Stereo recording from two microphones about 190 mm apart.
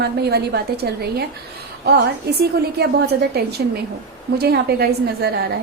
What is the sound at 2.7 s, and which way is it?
A woman's voice, 55° right (ahead or behind).